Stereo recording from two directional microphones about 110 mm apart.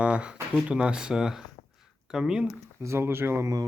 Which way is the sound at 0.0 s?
10° right (ahead or behind).